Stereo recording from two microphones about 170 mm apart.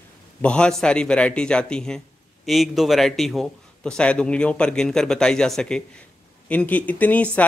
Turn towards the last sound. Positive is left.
turn(degrees=10)  # may be behind; listen again after turning